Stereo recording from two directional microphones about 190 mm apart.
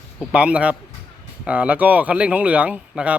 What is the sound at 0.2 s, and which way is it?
A man's voice, 5° right (ahead or behind).